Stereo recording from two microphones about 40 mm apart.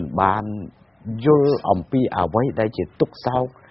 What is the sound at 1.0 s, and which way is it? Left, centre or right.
Speech, right.